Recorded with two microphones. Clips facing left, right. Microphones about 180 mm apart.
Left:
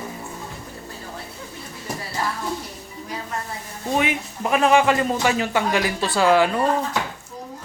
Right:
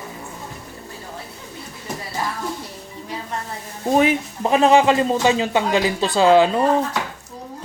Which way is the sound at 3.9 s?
35° right (ahead or behind).